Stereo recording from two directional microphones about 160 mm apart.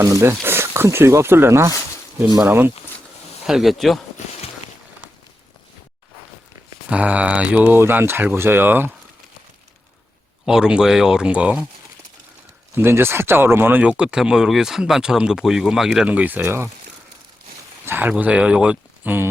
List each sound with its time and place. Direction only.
0.0 s speech: 15° right (ahead or behind)
3.4 s speech: centre (ahead or behind)
6.9 s speech: 10° right (ahead or behind)
10.4 s speech: 5° right (ahead or behind)
12.7 s speech: 15° right (ahead or behind)
17.8 s speech: 10° right (ahead or behind)